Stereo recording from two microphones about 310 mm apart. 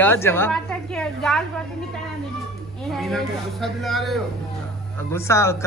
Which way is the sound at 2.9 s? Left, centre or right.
Centre.